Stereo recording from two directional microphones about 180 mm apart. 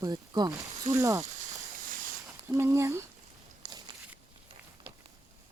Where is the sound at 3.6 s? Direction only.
25° right (ahead or behind).